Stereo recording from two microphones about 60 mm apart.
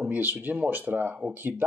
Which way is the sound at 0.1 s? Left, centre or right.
Right.